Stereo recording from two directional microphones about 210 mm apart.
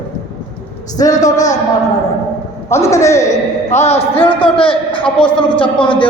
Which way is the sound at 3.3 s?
30° left (ahead or behind).